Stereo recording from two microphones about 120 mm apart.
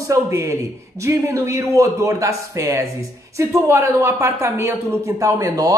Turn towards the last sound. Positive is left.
turn(degrees=-30)  # may be behind; listen again after turning